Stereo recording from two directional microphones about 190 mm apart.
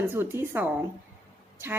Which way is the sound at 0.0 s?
10° right (ahead or behind).